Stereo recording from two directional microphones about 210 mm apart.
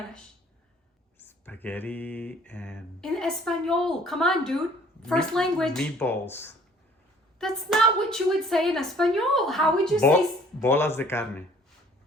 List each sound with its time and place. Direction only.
1.5 s a woman's voice: 10° left (ahead or behind)